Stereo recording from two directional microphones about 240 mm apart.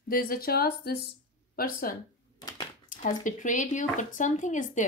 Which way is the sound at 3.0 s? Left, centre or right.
Left.